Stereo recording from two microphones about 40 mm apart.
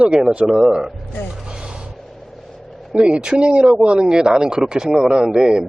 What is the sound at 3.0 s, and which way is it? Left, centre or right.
Speech, right.